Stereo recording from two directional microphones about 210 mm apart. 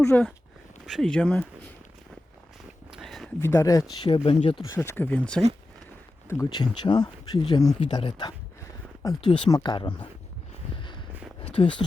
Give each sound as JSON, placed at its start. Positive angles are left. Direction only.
{"t": 0.0, "sound": "speech", "side_deg": 5}
{"t": 2.9, "sound": "a sound", "side_deg": 0}
{"t": 3.4, "sound": "speech", "side_deg": 15}
{"t": 4.6, "sound": "speech", "side_deg": 15}
{"t": 11.6, "sound": "speech", "side_deg": 25}